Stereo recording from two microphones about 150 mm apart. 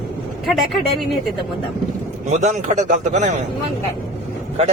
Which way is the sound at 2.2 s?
50° right (ahead or behind).